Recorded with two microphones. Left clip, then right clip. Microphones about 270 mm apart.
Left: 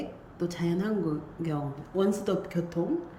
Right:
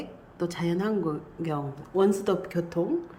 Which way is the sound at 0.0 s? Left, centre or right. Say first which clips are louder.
Right 1 dB; centre.